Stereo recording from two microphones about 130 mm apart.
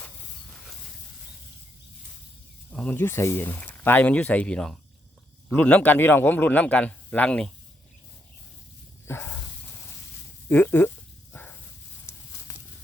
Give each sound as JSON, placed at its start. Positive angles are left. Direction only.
{"t": 2.7, "sound": "a man's voice", "side_deg": 15}
{"t": 9.0, "sound": "snake", "side_deg": 20}
{"t": 10.5, "sound": "a sound", "side_deg": 15}